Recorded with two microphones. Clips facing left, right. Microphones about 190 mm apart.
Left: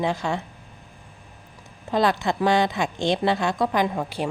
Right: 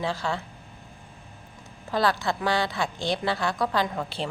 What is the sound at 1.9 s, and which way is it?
A woman's voice, 20° left (ahead or behind).